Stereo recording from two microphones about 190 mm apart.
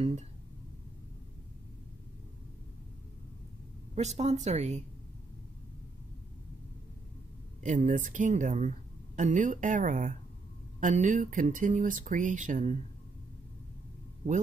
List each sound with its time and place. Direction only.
3.9 s speech: 35° right (ahead or behind)
7.6 s speech: 40° right (ahead or behind)